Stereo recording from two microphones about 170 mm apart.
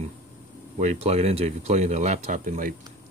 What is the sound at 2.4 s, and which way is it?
Speech, 55° right (ahead or behind).